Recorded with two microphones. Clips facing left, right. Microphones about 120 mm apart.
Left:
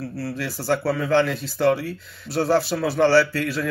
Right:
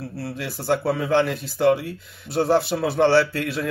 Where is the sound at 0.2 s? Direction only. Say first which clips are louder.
Left 1 dB; 20° right (ahead or behind).